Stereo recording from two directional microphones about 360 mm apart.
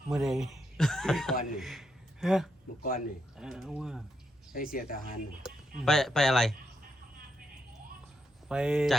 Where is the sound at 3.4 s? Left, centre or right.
Centre.